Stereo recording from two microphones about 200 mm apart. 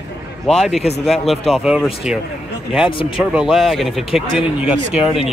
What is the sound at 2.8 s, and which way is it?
Speech, 25° left (ahead or behind).